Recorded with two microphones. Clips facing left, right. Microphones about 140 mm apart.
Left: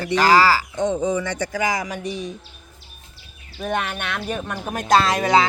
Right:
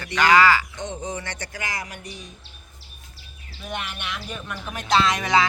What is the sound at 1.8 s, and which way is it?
Speech, 90° left.